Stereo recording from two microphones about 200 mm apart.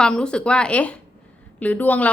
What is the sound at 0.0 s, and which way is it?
A woman's voice, 5° left (ahead or behind).